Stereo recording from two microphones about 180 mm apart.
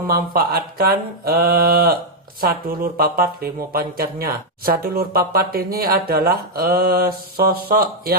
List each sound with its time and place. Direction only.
0.1 s speech: 55° right (ahead or behind)